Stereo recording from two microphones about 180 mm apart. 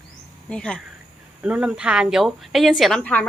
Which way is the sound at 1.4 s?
5° right (ahead or behind).